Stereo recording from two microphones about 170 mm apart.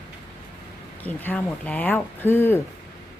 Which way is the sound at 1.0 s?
10° left (ahead or behind).